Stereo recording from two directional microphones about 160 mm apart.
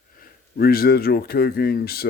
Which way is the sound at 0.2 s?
70° left (ahead or behind).